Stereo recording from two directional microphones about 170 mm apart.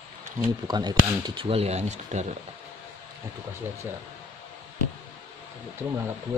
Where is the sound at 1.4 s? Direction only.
35° right (ahead or behind).